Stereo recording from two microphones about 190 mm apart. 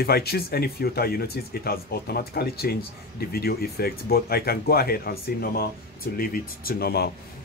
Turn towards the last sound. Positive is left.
turn(degrees=55)  # may be behind; listen again after turning